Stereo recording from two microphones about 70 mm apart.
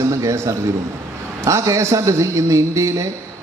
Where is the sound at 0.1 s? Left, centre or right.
Right.